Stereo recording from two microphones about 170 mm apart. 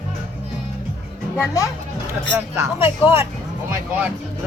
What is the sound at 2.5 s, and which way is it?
Speech, 15° right (ahead or behind).